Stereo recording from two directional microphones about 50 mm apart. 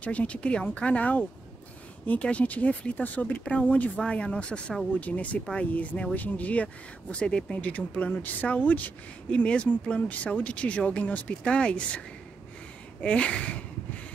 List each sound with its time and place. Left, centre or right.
0.0 s speech: left
5.0 s speech: left
5.4 s speech: centre
6.1 s speech: left
7.5 s speech: left
13.0 s speech: left